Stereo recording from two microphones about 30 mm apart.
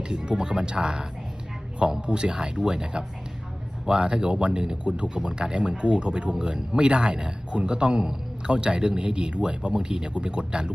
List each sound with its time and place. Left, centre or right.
0.1 s a man's voice: right